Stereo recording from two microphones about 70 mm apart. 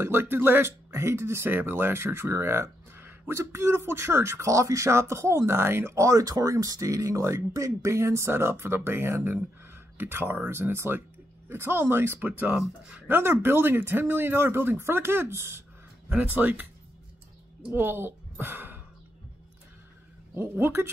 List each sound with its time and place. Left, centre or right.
0.0 s speech: right
12.5 s speech: centre
13.1 s speech: right
16.2 s speech: right
17.7 s a woman's voice: right
20.3 s speech: right